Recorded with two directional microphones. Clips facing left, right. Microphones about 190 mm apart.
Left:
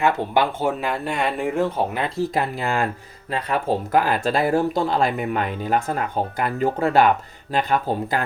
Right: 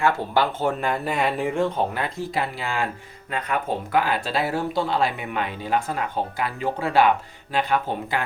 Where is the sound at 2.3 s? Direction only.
45° left (ahead or behind).